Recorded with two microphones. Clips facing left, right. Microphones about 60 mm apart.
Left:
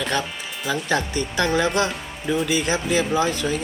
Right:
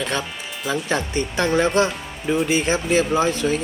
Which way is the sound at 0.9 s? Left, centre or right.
Right.